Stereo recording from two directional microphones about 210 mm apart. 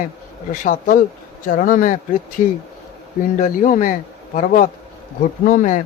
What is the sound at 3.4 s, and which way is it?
Speech, 35° left (ahead or behind).